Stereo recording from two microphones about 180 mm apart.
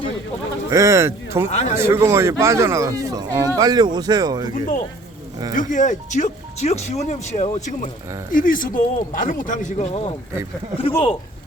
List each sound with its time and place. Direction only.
0.7 s speech: 15° right (ahead or behind)
1.5 s speech: 40° left (ahead or behind)
1.7 s speech: 15° right (ahead or behind)
4.5 s speech: 45° left (ahead or behind)